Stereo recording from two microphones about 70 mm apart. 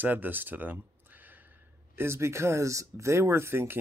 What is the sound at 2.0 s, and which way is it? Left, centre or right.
Speech, right.